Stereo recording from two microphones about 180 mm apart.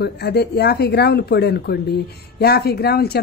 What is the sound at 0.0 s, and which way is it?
Speech, 65° left (ahead or behind).